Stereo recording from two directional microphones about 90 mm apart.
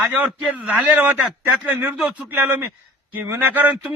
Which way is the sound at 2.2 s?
20° right (ahead or behind).